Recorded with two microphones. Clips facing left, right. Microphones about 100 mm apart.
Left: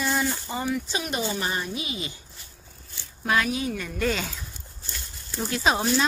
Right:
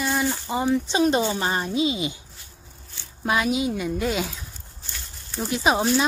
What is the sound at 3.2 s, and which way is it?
A woman's voice, 20° right (ahead or behind).